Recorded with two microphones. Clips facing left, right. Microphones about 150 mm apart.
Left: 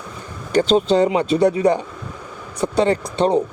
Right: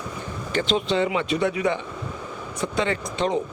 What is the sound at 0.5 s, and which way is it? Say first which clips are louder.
Speech: left 8 dB; 35° left (ahead or behind).